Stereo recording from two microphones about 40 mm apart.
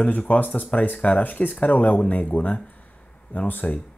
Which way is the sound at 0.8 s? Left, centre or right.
Left.